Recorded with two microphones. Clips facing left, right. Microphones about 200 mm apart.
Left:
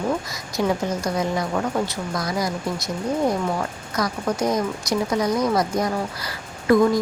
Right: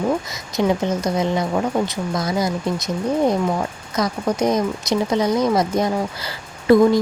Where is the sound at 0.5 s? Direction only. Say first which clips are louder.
Right 3 dB; 20° right (ahead or behind).